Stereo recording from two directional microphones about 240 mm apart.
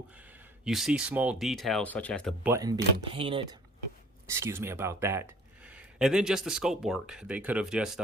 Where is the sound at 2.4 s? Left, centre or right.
Centre.